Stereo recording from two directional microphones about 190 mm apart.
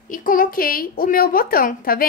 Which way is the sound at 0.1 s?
45° left (ahead or behind).